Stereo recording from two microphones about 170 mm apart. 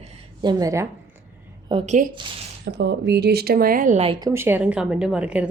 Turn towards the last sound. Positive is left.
turn(degrees=-5)  # may be behind; listen again after turning